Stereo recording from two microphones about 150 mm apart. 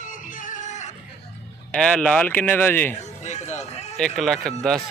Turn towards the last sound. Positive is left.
turn(degrees=5)  # may be behind; listen again after turning